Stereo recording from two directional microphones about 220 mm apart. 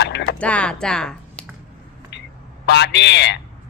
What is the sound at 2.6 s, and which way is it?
Speech, 50° left (ahead or behind).